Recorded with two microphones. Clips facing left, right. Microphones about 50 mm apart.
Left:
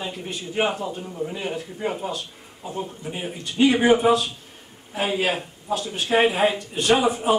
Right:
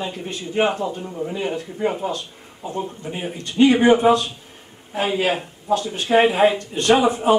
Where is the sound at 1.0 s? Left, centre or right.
Centre.